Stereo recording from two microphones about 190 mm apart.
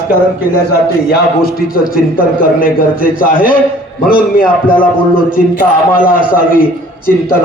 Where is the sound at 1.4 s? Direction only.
50° left (ahead or behind).